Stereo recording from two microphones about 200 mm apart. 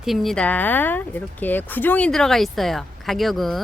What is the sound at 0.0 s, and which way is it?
Speech, centre (ahead or behind).